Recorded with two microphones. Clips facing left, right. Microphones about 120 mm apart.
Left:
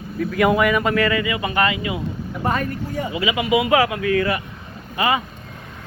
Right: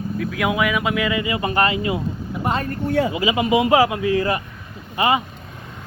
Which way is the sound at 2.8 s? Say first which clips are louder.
Right 7 dB; 80° right.